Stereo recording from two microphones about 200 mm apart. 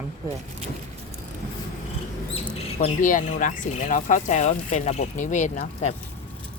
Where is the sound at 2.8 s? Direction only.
40° left (ahead or behind).